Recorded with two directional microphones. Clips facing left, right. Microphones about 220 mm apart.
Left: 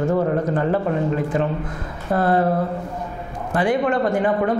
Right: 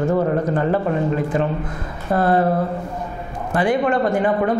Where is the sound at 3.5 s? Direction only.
20° right (ahead or behind).